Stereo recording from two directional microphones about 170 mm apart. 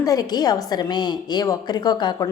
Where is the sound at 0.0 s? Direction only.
20° left (ahead or behind).